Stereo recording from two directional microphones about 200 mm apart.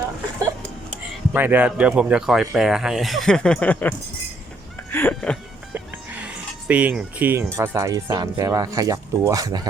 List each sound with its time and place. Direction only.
1.3 s speech: 10° right (ahead or behind); by 3.9 s 5° left (ahead or behind)
4.9 s a sound: 10° left (ahead or behind)
5.7 s speech: 5° right (ahead or behind)